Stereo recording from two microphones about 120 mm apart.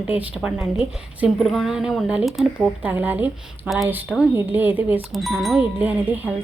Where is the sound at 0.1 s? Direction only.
10° right (ahead or behind).